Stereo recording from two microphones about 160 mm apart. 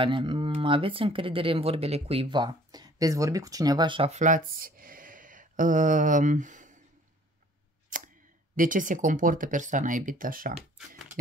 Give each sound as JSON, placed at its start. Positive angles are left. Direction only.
{"t": 0.0, "sound": "speech", "side_deg": -30}
{"t": 4.1, "sound": "speech", "side_deg": -50}
{"t": 7.9, "sound": "a sound", "side_deg": -55}
{"t": 8.5, "sound": "speech", "side_deg": -55}